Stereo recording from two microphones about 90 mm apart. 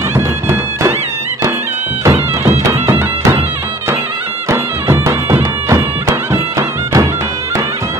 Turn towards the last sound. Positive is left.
turn(degrees=-35)  # may be behind; listen again after turning